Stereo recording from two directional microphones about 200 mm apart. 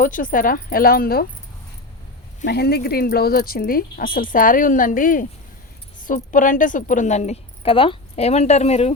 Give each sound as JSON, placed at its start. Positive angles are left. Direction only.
{"t": 0.0, "sound": "speech", "side_deg": 40}
{"t": 2.5, "sound": "speech", "side_deg": 55}